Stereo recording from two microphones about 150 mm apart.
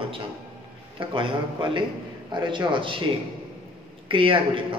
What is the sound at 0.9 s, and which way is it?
A man's voice, 35° right (ahead or behind).